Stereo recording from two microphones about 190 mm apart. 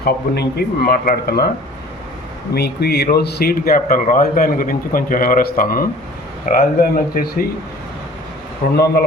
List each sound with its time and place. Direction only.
0.0 s speech: 55° left (ahead or behind)
2.6 s speech: 55° left (ahead or behind)
8.6 s speech: 55° left (ahead or behind)